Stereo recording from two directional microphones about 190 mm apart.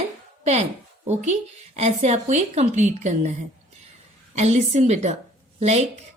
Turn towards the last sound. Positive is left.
turn(degrees=-35)  # may be behind; listen again after turning